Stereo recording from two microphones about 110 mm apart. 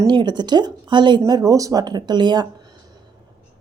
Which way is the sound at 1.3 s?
35° right (ahead or behind).